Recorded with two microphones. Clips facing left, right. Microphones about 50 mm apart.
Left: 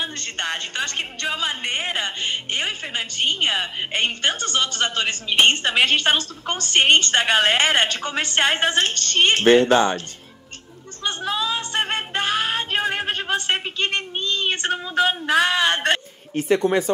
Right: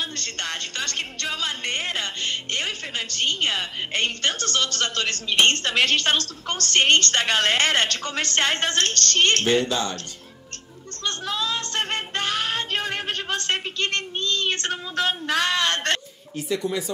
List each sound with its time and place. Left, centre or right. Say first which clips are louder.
0.0 s speech: left 3 dB; centre
9.7 s speech: left 9 dB; left
11.1 s a sound: left 3 dB; centre
16.3 s speech: left 7 dB; left